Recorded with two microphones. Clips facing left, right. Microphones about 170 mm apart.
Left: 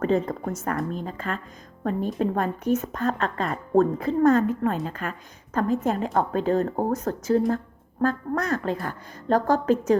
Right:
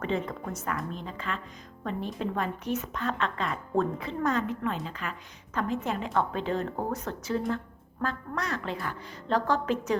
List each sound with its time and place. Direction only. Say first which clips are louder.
0.0 s a woman's voice: left 7 dB; 40° left (ahead or behind)